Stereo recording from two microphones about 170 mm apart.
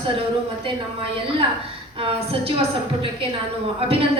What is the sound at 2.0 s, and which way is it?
A woman's voice, 35° right (ahead or behind).